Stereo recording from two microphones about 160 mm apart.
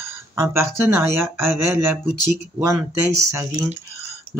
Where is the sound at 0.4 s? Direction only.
15° right (ahead or behind).